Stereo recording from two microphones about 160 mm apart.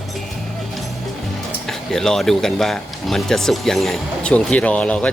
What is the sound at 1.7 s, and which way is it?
Speech, 5° left (ahead or behind).